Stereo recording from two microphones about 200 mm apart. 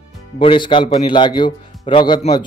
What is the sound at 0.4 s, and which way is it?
A man's voice, 25° left (ahead or behind).